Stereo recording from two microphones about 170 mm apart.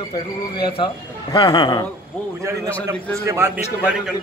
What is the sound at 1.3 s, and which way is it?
Speech, 25° left (ahead or behind).